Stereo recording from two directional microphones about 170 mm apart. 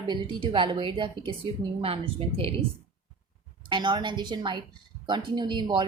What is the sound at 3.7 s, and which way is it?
A woman's voice, 25° right (ahead or behind).